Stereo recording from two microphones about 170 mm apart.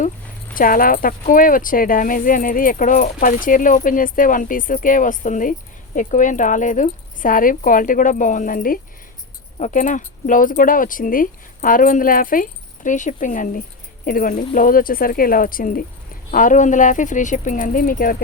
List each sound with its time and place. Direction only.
0.5 s speech: 55° left (ahead or behind)